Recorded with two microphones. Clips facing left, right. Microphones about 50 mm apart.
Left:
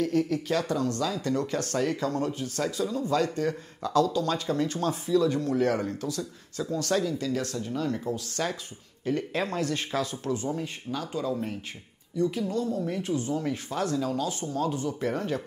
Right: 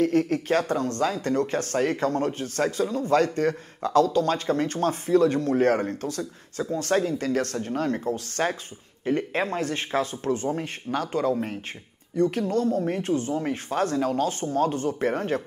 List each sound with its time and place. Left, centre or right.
0.0 s speech: right